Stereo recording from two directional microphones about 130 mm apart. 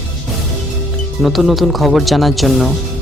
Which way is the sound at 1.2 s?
Centre (ahead or behind).